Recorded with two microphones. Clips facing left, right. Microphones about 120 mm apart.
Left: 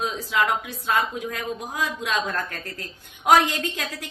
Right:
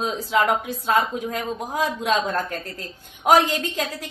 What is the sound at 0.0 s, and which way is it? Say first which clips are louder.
A woman's voice: right 3 dB; 35° right (ahead or behind).